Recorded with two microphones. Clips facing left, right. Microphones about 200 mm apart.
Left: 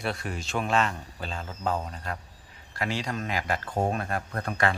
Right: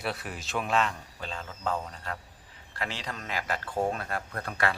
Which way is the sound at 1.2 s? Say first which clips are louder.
Left 2 dB; 40° left (ahead or behind).